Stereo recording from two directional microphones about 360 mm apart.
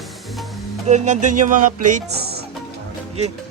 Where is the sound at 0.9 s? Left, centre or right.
Centre.